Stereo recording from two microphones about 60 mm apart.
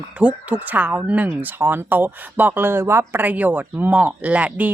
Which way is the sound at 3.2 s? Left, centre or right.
Right.